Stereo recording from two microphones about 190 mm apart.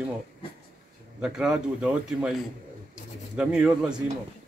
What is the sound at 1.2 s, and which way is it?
A man's voice, 5° right (ahead or behind).